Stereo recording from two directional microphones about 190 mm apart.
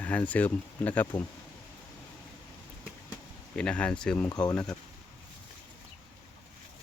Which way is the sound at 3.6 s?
5° left (ahead or behind).